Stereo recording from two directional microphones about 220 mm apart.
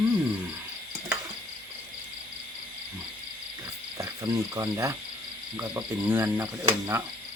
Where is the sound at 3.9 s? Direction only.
15° right (ahead or behind).